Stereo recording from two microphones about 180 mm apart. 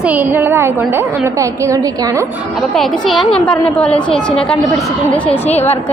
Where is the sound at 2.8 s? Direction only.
Centre (ahead or behind).